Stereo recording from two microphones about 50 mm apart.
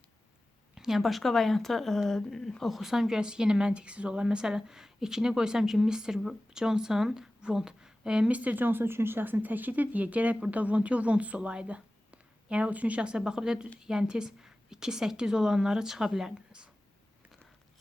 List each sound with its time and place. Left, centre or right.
0.8 s a woman's voice: centre
8.3 s speech: right; by 16.3 s centre
16.5 s speech: right